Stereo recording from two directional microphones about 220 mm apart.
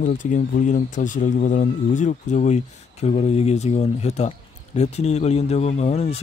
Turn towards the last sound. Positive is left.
turn(degrees=30)  # may be behind; listen again after turning